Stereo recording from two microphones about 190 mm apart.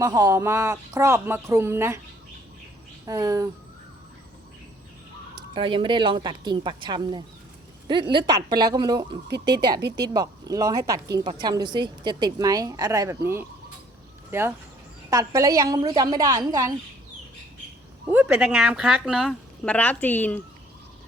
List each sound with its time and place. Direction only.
0.0 s speech: 20° right (ahead or behind)
3.1 s speech: 20° right (ahead or behind)
5.5 s a woman's voice: 25° right (ahead or behind)
18.1 s a woman's voice: 10° right (ahead or behind); by 20.4 s 10° left (ahead or behind)